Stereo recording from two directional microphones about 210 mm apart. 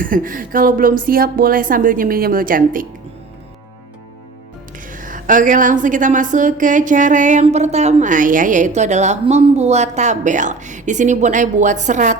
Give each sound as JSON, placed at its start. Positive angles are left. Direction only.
{"t": 0.0, "sound": "speech", "side_deg": -40}
{"t": 4.9, "sound": "speech", "side_deg": -40}